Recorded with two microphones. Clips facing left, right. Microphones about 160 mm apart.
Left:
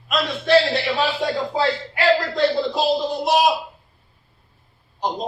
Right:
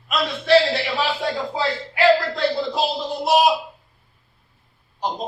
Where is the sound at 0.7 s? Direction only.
Centre (ahead or behind).